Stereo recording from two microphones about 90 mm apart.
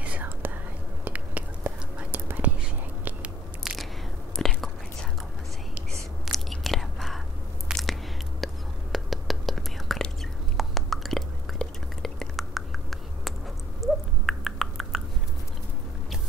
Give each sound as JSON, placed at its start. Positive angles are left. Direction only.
{"t": 0.0, "sound": "whispering", "side_deg": -20}
{"t": 3.6, "sound": "biting", "side_deg": 0}
{"t": 4.4, "sound": "whispering", "side_deg": 0}
{"t": 6.2, "sound": "chewing", "side_deg": 0}
{"t": 7.7, "sound": "biting", "side_deg": -5}
{"t": 8.9, "sound": "whispering", "side_deg": 0}
{"t": 10.6, "sound": "a sound", "side_deg": 0}
{"t": 13.7, "sound": "owl", "side_deg": 0}